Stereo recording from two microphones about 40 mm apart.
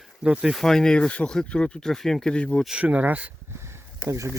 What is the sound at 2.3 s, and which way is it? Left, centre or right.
Speech, left.